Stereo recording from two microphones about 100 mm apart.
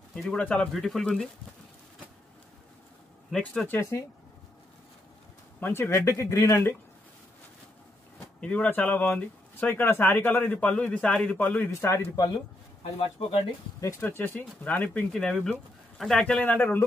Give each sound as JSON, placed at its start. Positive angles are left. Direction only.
{"t": 0.2, "sound": "speech", "side_deg": 10}
{"t": 3.3, "sound": "speech", "side_deg": 5}
{"t": 3.6, "sound": "speech", "side_deg": 25}
{"t": 5.6, "sound": "speech", "side_deg": 25}
{"t": 8.4, "sound": "speech", "side_deg": 10}
{"t": 13.7, "sound": "speech", "side_deg": 35}
{"t": 14.0, "sound": "speech", "side_deg": 20}